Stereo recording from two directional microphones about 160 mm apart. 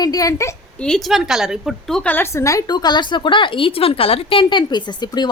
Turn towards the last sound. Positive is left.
turn(degrees=25)  # may be behind; listen again after turning